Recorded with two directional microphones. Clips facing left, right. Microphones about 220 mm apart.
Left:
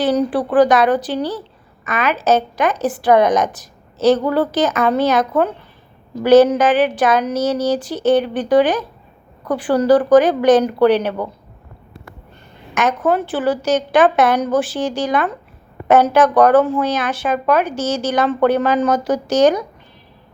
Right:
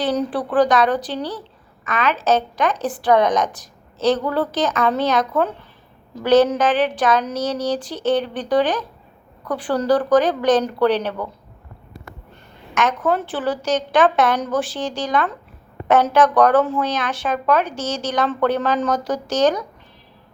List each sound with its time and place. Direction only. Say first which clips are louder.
0.0 s a woman's voice: left 4 dB; centre (ahead or behind)
12.7 s a woman's voice: left 3 dB; 5° left (ahead or behind)